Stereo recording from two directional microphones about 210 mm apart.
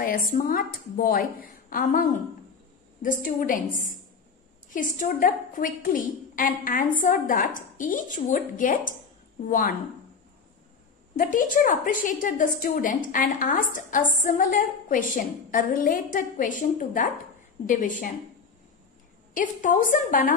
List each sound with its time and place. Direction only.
0.0 s a woman's voice: 40° left (ahead or behind)
11.1 s a woman's voice: 40° left (ahead or behind)
19.3 s a woman's voice: 40° left (ahead or behind)